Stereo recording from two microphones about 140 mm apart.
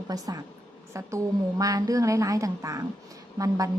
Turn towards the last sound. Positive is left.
turn(degrees=-25)  # may be behind; listen again after turning